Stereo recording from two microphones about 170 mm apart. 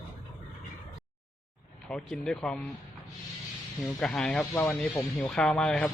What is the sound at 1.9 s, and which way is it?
Speech, 5° left (ahead or behind).